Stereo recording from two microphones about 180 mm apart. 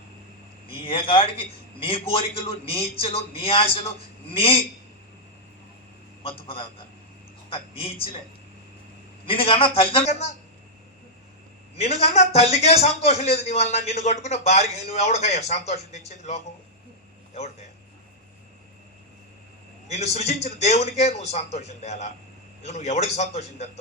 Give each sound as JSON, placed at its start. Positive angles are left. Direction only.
{"t": 0.7, "sound": "a man's voice", "side_deg": 30}
{"t": 6.2, "sound": "a man's voice", "side_deg": 30}
{"t": 9.2, "sound": "a man's voice", "side_deg": 30}
{"t": 11.8, "sound": "a man's voice", "side_deg": 35}
{"t": 19.9, "sound": "a man's voice", "side_deg": 35}